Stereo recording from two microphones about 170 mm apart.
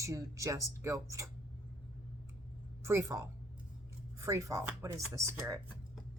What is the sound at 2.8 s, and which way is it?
A woman's voice, 15° right (ahead or behind).